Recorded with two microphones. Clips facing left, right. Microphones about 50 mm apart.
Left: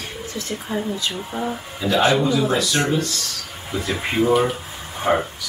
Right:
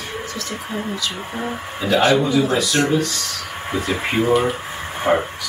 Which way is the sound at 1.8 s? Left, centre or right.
Right.